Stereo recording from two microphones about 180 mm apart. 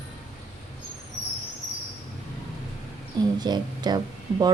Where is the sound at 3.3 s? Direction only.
25° right (ahead or behind).